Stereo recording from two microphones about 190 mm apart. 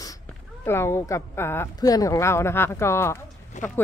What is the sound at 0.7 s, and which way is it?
Speech, 15° left (ahead or behind).